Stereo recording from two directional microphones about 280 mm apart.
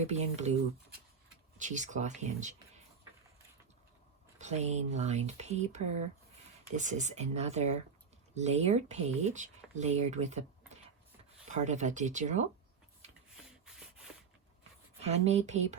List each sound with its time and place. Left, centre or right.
0.0 s speech: right
1.5 s speech: right
4.4 s speech: right
11.5 s speech: right
13.3 s rub: centre
15.0 s speech: right